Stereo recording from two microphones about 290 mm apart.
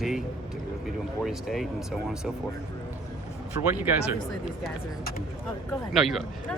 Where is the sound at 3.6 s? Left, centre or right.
Centre.